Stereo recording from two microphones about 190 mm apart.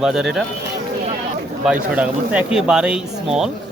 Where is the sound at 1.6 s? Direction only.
5° right (ahead or behind).